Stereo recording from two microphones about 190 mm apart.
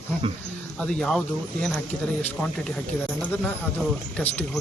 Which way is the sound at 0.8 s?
5° left (ahead or behind).